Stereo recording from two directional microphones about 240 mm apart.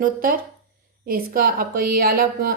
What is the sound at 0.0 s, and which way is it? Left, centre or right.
A woman's voice, right.